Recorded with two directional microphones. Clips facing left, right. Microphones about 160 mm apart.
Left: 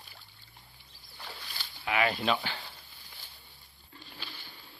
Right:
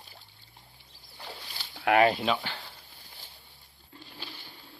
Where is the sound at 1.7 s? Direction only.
60° right (ahead or behind).